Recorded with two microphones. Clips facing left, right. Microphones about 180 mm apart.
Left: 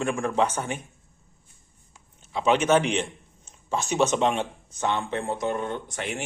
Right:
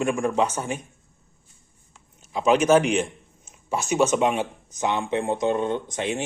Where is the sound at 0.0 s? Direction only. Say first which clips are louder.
Right 2 dB; 15° right (ahead or behind).